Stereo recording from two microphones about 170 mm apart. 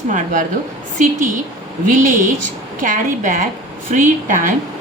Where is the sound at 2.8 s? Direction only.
50° right (ahead or behind).